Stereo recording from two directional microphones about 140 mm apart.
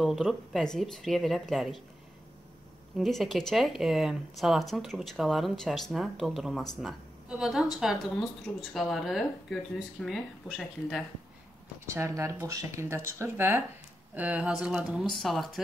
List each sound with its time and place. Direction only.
0.0 s speech: centre (ahead or behind)
3.0 s a woman's voice: centre (ahead or behind)
11.8 s speech: 20° right (ahead or behind); by 15.6 s centre (ahead or behind)